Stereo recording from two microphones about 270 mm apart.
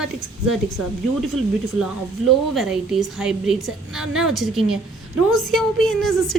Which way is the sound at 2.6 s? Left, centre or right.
Centre.